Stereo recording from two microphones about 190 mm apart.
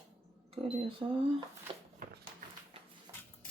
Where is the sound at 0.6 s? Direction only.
30° right (ahead or behind).